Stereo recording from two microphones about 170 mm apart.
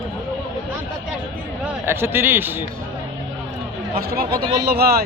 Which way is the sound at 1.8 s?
15° right (ahead or behind).